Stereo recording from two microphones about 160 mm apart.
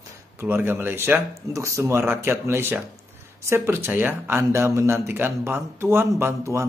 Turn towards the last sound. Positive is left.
turn(degrees=-15)  # may be behind; listen again after turning